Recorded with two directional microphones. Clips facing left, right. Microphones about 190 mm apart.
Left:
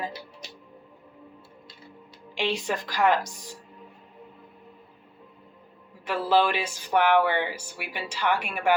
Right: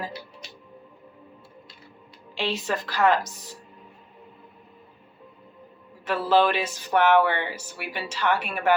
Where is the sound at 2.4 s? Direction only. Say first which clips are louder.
Even; 15° left (ahead or behind).